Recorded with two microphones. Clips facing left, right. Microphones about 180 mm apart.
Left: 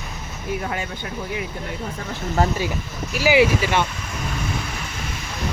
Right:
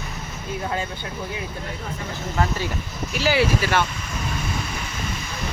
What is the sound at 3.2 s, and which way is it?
Speech, 15° left (ahead or behind).